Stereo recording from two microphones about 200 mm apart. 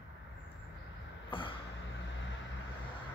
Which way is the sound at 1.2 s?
25° left (ahead or behind).